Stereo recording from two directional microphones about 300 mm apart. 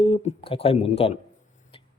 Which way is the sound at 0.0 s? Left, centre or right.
Centre.